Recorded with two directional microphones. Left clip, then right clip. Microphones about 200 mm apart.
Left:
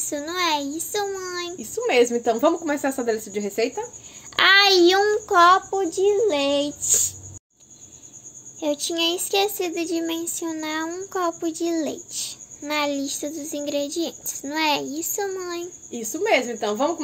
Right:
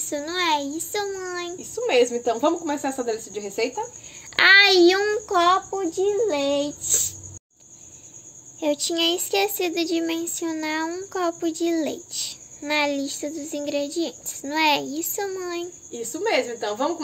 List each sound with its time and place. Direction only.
0.0 s speech: 5° left (ahead or behind)
1.6 s speech: 45° left (ahead or behind)
4.4 s a child's voice: 5° left (ahead or behind)
8.5 s speech: centre (ahead or behind)
15.9 s speech: 45° left (ahead or behind)